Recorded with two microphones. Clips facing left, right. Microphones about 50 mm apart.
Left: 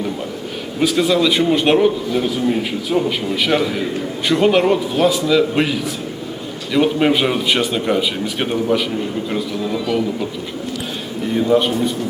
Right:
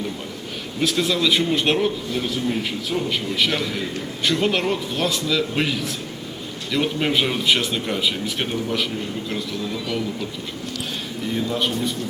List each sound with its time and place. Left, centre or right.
0.8 s a man's voice: centre
11.3 s a man's voice: centre
11.6 s a man's voice: centre